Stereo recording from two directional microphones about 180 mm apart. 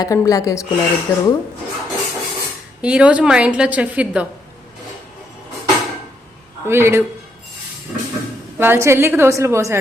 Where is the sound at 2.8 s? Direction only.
5° right (ahead or behind).